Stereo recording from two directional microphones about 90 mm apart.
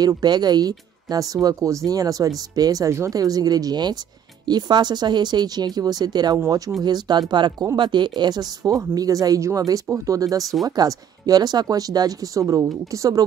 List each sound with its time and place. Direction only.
0.0 s speech: 50° right (ahead or behind)